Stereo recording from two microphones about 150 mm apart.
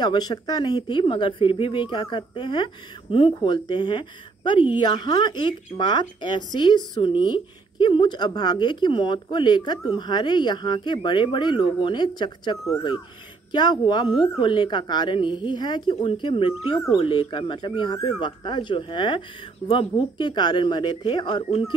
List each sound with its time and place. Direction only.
0.0 s a woman's voice: 25° left (ahead or behind)